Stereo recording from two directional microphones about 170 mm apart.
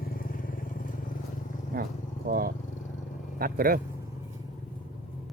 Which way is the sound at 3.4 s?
60° right (ahead or behind).